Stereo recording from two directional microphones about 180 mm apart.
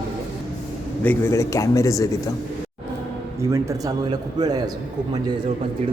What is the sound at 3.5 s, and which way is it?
A man's voice, 20° right (ahead or behind).